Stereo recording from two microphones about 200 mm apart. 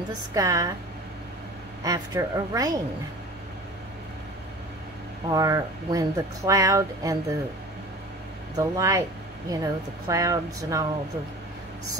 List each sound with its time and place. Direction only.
0.1 s speech: 15° right (ahead or behind)
1.8 s speech: 15° right (ahead or behind)
5.3 s speech: 20° right (ahead or behind)
8.5 s speech: 15° right (ahead or behind)